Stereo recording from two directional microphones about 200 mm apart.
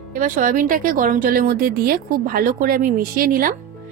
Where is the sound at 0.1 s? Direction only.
45° right (ahead or behind).